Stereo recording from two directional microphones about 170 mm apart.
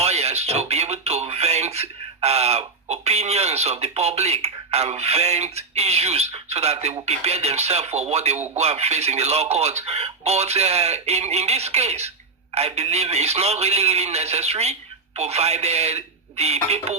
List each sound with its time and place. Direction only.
0.0 s speech: 40° right (ahead or behind)